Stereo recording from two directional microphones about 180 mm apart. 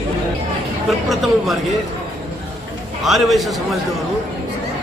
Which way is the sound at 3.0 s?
Centre (ahead or behind).